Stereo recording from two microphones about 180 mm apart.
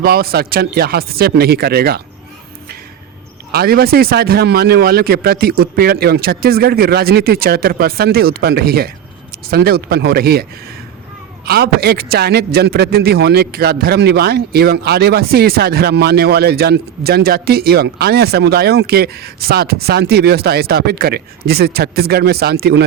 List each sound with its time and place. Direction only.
0.0 s a man's voice: 60° right (ahead or behind)
3.5 s a man's voice: 60° right (ahead or behind)
11.4 s a man's voice: 60° right (ahead or behind)